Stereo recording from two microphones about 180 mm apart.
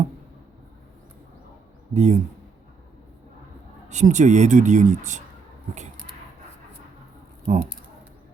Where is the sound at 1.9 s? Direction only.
40° right (ahead or behind).